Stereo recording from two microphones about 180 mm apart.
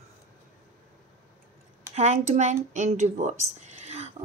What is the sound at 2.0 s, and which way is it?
Speech, 40° right (ahead or behind).